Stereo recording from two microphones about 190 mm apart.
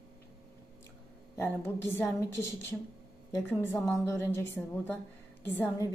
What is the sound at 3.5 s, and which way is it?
Speech, 10° left (ahead or behind).